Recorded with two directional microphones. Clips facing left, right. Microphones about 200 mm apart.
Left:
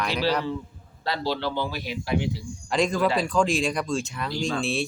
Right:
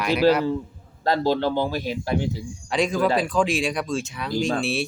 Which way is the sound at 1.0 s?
45° right (ahead or behind).